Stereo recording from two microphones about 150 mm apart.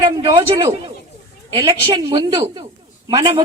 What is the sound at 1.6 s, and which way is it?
A woman's voice, 25° right (ahead or behind).